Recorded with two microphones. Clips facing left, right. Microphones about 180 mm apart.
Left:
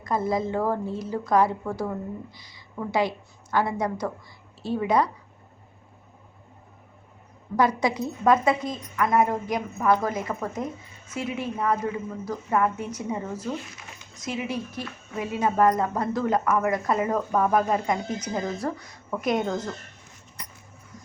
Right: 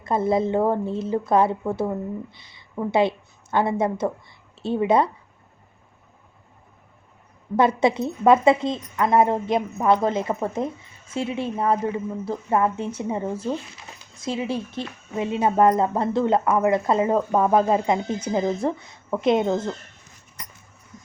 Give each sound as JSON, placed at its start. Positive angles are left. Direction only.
{"t": 0.0, "sound": "a woman's voice", "side_deg": -25}
{"t": 7.5, "sound": "a woman's voice", "side_deg": -25}
{"t": 20.9, "sound": "vehicle", "side_deg": -20}